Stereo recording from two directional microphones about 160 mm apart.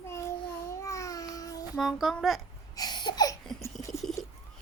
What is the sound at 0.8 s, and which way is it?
Babbling, 20° left (ahead or behind).